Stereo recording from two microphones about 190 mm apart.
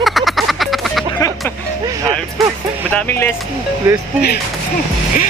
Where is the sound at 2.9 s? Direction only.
10° left (ahead or behind).